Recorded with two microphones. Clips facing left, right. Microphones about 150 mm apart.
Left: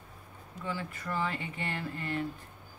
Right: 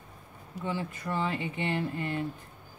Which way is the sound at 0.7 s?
20° right (ahead or behind).